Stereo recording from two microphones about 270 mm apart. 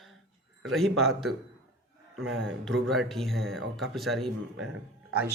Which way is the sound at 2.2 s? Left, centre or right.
Right.